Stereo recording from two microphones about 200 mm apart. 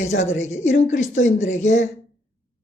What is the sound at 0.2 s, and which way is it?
Speech, 35° left (ahead or behind).